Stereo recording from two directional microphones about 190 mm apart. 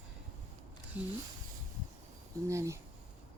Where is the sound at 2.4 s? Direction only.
15° right (ahead or behind).